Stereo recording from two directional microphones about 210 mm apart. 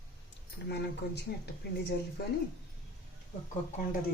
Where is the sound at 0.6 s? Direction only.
50° left (ahead or behind).